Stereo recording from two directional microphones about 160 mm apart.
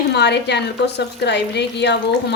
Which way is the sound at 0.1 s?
90° left.